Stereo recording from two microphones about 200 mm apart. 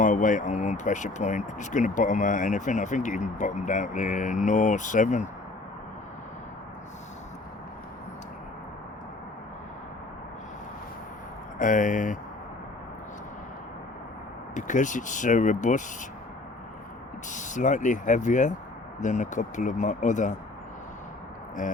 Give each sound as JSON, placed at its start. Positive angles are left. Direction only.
{"t": 0.0, "sound": "speech", "side_deg": 40}
{"t": 11.6, "sound": "speech", "side_deg": 40}
{"t": 14.5, "sound": "speech", "side_deg": 40}
{"t": 17.2, "sound": "speech", "side_deg": 40}